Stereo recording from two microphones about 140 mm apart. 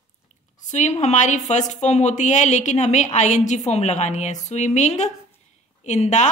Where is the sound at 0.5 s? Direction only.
60° left (ahead or behind).